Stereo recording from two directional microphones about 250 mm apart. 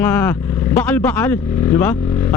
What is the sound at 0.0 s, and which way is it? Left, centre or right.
Speech, centre.